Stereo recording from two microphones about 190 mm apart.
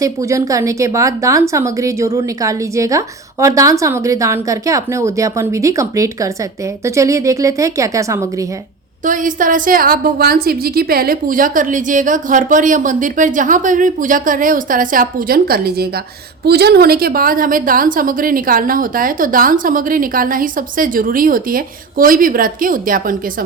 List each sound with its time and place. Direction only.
0.0 s a woman's voice: 15° right (ahead or behind)
9.0 s a woman's voice: 45° right (ahead or behind)